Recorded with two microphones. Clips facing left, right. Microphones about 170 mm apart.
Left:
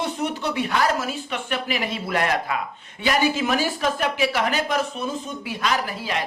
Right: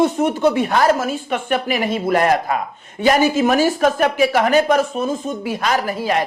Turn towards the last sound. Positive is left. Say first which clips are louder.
# right 7 dB
turn(degrees=-45)  # may be behind; listen again after turning